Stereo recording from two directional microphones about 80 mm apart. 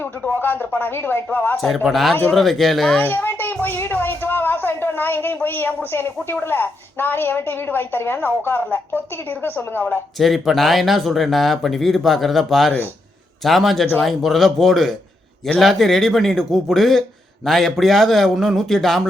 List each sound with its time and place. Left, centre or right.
0.0 s speech: left
1.5 s speech: centre
3.0 s speech: left
10.2 s speech: centre